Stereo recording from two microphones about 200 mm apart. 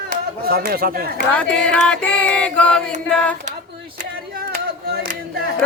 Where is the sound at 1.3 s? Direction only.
5° left (ahead or behind).